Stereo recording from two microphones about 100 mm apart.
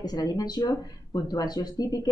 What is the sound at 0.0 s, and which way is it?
A woman's voice, 40° left (ahead or behind).